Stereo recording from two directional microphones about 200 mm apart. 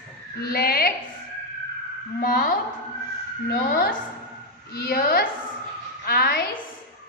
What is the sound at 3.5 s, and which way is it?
A woman's voice, 50° left (ahead or behind).